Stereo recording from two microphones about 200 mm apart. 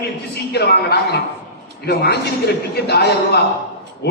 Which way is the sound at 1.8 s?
55° left (ahead or behind).